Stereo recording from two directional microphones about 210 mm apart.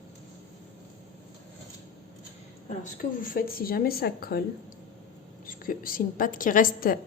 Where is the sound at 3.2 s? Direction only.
40° left (ahead or behind).